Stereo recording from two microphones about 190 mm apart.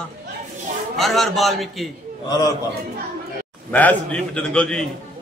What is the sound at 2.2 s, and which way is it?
Speech, 20° left (ahead or behind).